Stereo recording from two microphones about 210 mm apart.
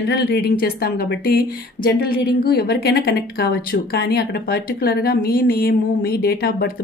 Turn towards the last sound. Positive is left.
turn(degrees=50)  # may be behind; listen again after turning